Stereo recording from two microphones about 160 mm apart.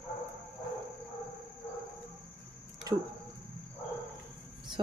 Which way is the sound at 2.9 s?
25° right (ahead or behind).